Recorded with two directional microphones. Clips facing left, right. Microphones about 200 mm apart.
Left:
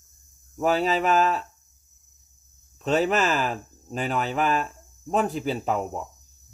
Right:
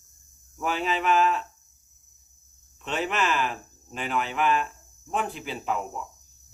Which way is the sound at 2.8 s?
40° left (ahead or behind).